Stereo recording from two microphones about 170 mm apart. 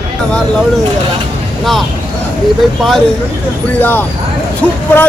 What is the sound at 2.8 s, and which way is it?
Speech, centre (ahead or behind).